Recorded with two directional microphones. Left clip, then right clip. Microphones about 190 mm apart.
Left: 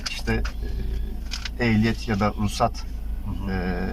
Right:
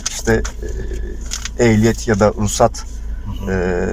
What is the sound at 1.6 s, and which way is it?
Speech, 45° right (ahead or behind).